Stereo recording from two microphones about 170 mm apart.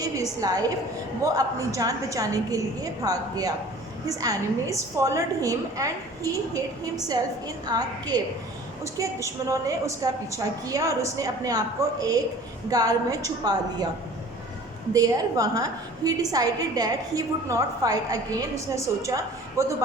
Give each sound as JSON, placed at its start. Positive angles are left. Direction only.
{"t": 0.0, "sound": "a woman's voice", "side_deg": -20}
{"t": 9.2, "sound": "a woman's voice", "side_deg": -15}
{"t": 14.9, "sound": "a woman's voice", "side_deg": -20}